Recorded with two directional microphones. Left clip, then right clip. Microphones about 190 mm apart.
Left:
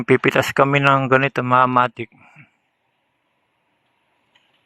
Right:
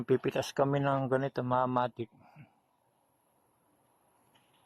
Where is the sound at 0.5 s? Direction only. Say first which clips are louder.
Left 13 dB; 40° left (ahead or behind).